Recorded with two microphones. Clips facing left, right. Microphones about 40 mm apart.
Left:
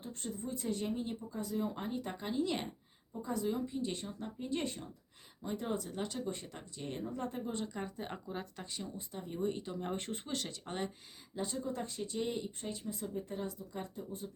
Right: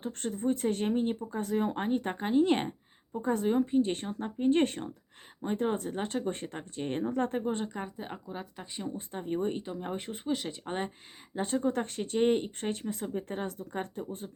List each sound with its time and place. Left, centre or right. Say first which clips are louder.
0.0 s speech: right 10 dB; right
5.4 s speech: right 7 dB; right
7.8 s speech: right 3 dB; centre
9.0 s speech: right 6 dB; right
9.7 s speech: right 2 dB; centre
10.7 s speech: right 5 dB; right
11.3 s speech: right 8 dB; right